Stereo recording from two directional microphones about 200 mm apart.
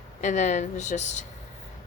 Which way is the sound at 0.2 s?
35° left (ahead or behind).